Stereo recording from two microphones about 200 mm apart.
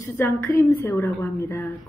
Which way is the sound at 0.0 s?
15° left (ahead or behind).